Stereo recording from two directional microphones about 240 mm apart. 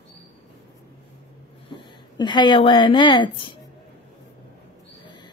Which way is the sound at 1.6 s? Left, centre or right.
Centre.